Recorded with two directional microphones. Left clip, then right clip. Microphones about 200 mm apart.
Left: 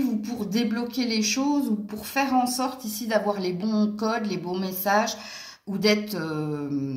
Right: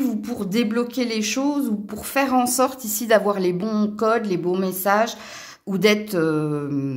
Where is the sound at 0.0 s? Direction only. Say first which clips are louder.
Right 3 dB; 50° right (ahead or behind).